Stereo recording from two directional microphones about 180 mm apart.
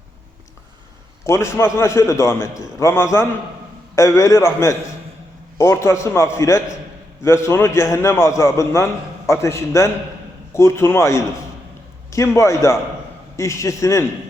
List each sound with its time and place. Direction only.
1.2 s a man's voice: 15° left (ahead or behind)